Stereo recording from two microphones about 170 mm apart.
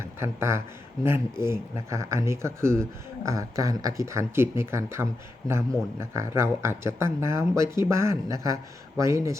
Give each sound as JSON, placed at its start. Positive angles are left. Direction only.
{"t": 0.0, "sound": "speech", "side_deg": -15}